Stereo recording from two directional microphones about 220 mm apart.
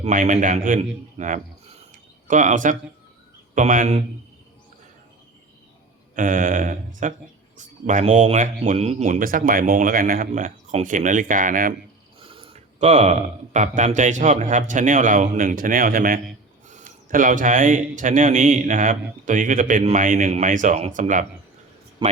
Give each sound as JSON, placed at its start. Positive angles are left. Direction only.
{"t": 0.0, "sound": "speech", "side_deg": -35}
{"t": 6.1, "sound": "speech", "side_deg": -35}
{"t": 12.2, "sound": "speech", "side_deg": -25}
{"t": 22.0, "sound": "speech", "side_deg": -20}